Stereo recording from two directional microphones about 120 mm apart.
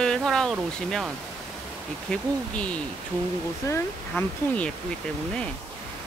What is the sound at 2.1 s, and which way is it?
Speech, 10° left (ahead or behind).